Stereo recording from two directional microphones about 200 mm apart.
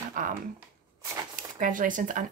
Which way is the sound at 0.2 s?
45° right (ahead or behind).